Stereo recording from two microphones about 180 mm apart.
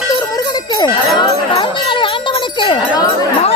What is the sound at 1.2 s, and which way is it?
Jingle bell, 25° left (ahead or behind).